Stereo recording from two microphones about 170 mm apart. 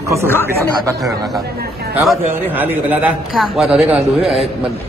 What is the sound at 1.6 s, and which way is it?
Speech, 70° right (ahead or behind).